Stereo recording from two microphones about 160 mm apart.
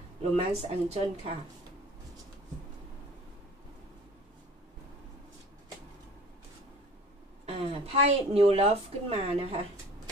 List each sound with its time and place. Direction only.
0.5 s speech: 40° right (ahead or behind)
7.4 s a woman's voice: 40° right (ahead or behind)